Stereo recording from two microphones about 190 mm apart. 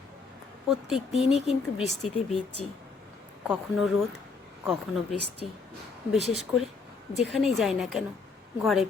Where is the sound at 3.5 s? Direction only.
Centre (ahead or behind).